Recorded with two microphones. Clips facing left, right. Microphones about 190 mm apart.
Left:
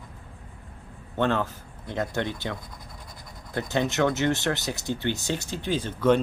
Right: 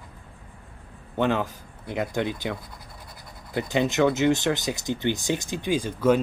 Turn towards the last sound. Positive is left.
turn(degrees=-10)  # may be behind; listen again after turning